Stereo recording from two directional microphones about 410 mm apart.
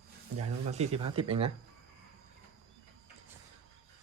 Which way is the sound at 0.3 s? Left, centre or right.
Centre.